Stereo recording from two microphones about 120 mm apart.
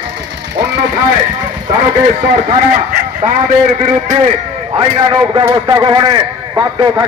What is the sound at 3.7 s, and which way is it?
Speech, 60° right (ahead or behind).